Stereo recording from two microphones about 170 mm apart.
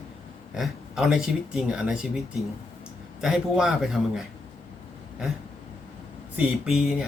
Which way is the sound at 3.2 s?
5° right (ahead or behind).